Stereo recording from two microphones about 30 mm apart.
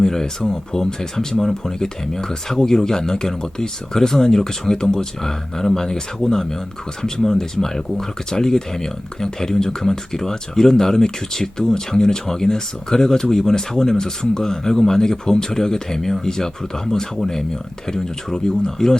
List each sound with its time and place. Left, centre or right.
0.0 s speech: centre